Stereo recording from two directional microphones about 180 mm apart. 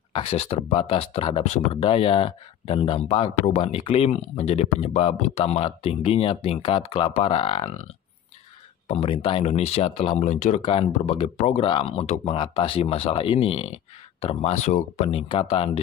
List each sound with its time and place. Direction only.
0.1 s speech: 30° left (ahead or behind)
8.8 s speech: 30° left (ahead or behind)